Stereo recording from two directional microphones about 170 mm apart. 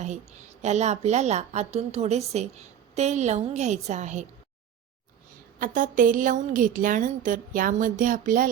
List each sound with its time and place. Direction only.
0.0 s a woman's voice: 45° right (ahead or behind)
5.5 s a woman's voice: 50° right (ahead or behind)